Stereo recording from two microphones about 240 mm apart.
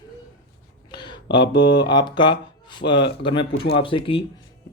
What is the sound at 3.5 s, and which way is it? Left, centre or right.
Speech, left.